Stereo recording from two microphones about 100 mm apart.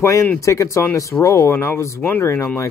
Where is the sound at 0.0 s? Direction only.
30° left (ahead or behind).